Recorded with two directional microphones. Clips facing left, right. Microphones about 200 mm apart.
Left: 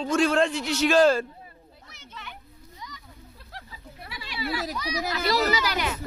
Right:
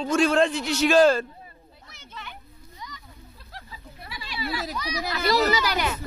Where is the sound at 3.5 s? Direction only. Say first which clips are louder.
Even; 65° left (ahead or behind).